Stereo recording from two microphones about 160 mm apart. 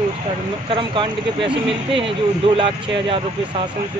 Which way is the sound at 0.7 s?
30° right (ahead or behind).